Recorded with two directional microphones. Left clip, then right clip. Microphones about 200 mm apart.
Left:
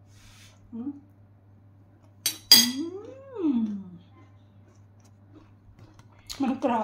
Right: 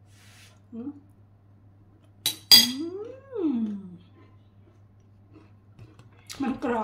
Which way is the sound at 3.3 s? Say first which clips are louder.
Left 1 dB; centre (ahead or behind).